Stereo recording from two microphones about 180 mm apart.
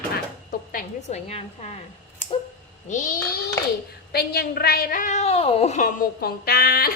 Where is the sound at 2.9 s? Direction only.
45° left (ahead or behind).